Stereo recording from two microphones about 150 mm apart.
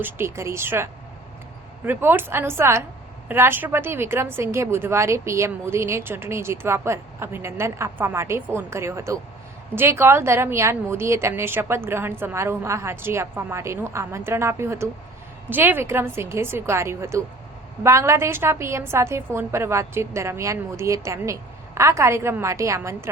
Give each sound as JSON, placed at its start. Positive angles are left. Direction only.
{"t": 0.0, "sound": "a woman's voice", "side_deg": -15}